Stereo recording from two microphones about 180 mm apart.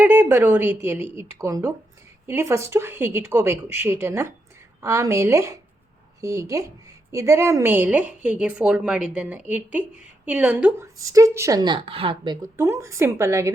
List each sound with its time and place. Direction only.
0.0 s a woman's voice: 10° right (ahead or behind); by 12.4 s 30° right (ahead or behind)
12.5 s a woman's voice: 15° right (ahead or behind)